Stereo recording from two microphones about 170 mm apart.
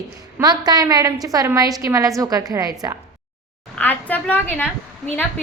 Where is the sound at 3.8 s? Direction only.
10° left (ahead or behind).